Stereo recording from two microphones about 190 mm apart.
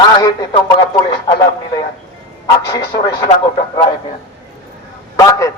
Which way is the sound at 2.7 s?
20° left (ahead or behind).